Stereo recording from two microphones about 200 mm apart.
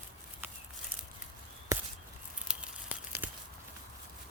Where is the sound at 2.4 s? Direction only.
5° right (ahead or behind).